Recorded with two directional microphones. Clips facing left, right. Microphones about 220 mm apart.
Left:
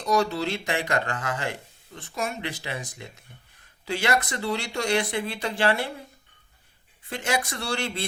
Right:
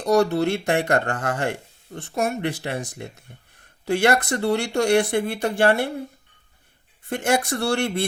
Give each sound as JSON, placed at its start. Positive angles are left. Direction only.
{"t": 0.1, "sound": "speech", "side_deg": -60}
{"t": 7.1, "sound": "speech", "side_deg": -55}